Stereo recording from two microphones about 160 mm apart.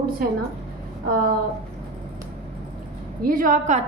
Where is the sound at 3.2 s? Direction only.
60° right (ahead or behind).